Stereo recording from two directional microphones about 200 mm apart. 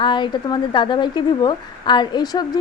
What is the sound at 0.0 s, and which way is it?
Speech, 25° left (ahead or behind).